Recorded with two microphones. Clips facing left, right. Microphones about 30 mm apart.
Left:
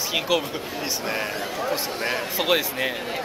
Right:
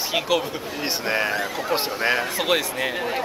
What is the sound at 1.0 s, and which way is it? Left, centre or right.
Speech, right.